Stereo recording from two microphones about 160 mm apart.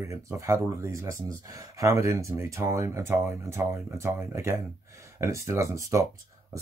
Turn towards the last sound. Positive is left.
turn(degrees=-20)  # may be behind; listen again after turning